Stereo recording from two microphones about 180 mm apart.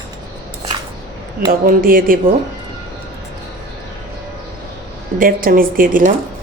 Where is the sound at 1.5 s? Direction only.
50° right (ahead or behind).